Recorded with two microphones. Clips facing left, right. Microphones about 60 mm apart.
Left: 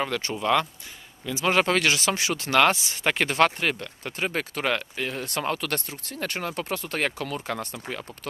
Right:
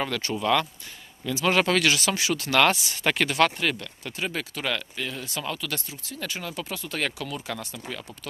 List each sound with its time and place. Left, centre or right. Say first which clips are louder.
0.2 s speech: right 1 dB; left
5.4 s speech: left 5 dB; left